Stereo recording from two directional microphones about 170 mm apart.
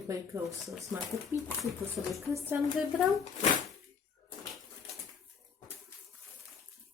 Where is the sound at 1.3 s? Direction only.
10° right (ahead or behind).